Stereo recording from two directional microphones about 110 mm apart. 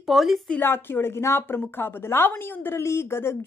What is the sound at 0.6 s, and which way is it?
Speech, 20° left (ahead or behind).